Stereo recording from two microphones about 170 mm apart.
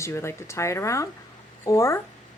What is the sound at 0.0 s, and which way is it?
Speech, 15° left (ahead or behind).